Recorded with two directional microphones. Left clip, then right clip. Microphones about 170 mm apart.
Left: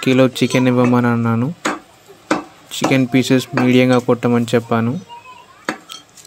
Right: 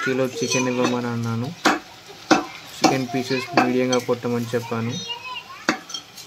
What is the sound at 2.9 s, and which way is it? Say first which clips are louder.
Speech: left 7 dB; 45° left (ahead or behind).